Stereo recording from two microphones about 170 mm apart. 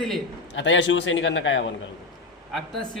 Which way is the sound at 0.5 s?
90° left.